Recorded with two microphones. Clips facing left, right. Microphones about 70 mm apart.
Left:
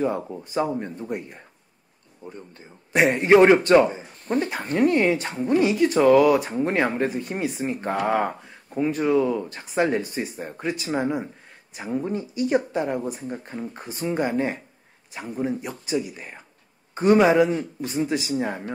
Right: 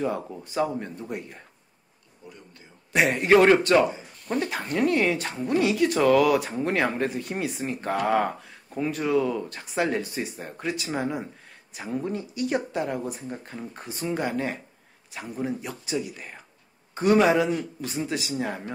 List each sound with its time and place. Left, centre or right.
0.6 s speech: centre
2.2 s speech: left
2.9 s a man's voice: centre
3.2 s speech: centre
3.8 s a sound: left
4.4 s speech: centre
16.2 s speech: centre
17.1 s speech: centre